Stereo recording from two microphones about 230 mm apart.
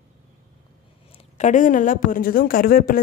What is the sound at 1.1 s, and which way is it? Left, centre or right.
Speech, left.